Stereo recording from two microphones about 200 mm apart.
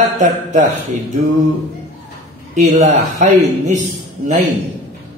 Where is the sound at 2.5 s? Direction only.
40° right (ahead or behind).